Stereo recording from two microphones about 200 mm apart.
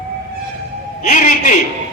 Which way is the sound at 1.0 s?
40° left (ahead or behind).